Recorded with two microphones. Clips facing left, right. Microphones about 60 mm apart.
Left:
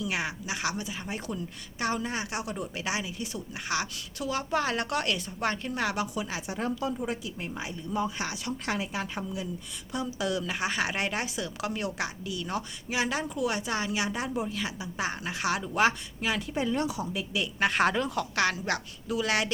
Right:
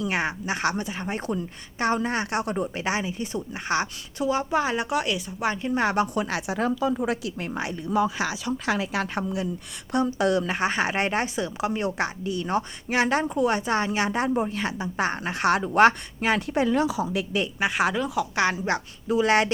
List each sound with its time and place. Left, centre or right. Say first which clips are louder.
0.0 s speech: right 5 dB; right; by 5.7 s centre
5.7 s speech: right 7 dB; right
6.5 s a woman's voice: right 6 dB; right
8.9 s a woman's voice: right 6 dB; right
9.9 s speech: right 8 dB; right
12.9 s speech: right 7 dB; right
16.6 s a woman's voice: right 6 dB; right
17.6 s speech: even; centre
18.3 s a woman's voice: right 3 dB; right